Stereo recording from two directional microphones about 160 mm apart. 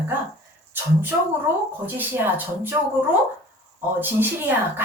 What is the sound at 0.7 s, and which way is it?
Speech, 15° right (ahead or behind).